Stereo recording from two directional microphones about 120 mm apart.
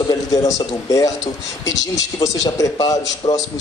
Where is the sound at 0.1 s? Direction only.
30° left (ahead or behind).